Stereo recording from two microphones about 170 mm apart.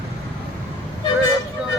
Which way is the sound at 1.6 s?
5° right (ahead or behind).